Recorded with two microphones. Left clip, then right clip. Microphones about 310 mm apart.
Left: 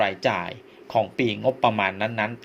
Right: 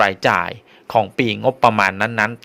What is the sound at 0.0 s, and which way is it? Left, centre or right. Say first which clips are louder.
A man's voice: right 8 dB; right.